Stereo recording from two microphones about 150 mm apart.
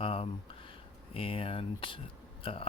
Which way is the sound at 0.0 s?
40° left (ahead or behind).